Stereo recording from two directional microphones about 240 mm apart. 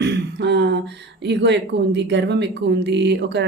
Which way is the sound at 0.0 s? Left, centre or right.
Right.